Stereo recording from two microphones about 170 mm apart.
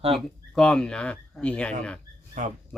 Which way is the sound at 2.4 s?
45° right (ahead or behind).